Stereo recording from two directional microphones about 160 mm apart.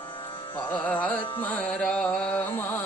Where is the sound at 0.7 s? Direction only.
10° left (ahead or behind).